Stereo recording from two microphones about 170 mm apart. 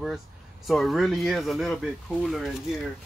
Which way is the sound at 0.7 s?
Centre (ahead or behind).